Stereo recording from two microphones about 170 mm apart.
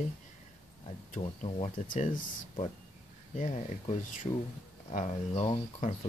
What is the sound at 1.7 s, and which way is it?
Speech, 50° left (ahead or behind).